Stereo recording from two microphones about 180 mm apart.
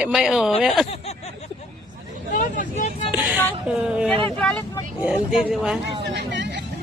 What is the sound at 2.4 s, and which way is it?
Speech, 45° left (ahead or behind).